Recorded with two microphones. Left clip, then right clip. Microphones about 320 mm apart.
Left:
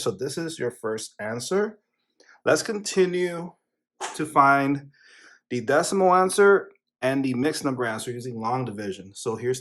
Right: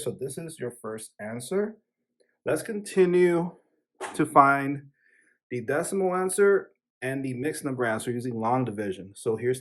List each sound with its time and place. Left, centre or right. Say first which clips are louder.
0.0 s speech: left 6 dB; centre
2.9 s speech: right 3 dB; centre
7.8 s speech: right 1 dB; centre